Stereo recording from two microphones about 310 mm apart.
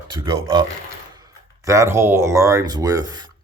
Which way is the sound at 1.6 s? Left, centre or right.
Centre.